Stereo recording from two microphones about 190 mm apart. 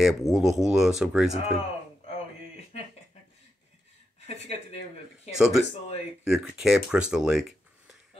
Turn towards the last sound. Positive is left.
turn(degrees=0)  # may be behind; listen again after turning